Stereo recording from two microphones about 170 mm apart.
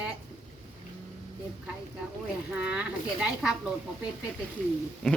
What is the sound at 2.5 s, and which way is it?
Speech, 5° right (ahead or behind).